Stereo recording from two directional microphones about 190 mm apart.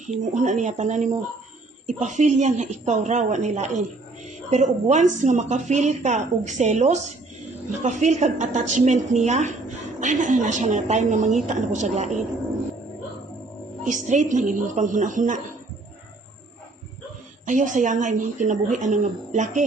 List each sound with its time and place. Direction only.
0.0 s a woman's voice: 40° right (ahead or behind)
13.8 s a woman's voice: 40° right (ahead or behind)
17.4 s a woman's voice: 40° right (ahead or behind)